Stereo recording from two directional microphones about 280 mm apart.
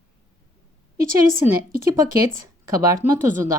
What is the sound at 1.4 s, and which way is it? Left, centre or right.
Speech, centre.